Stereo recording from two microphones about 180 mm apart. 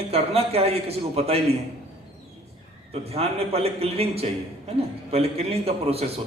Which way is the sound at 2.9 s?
35° right (ahead or behind).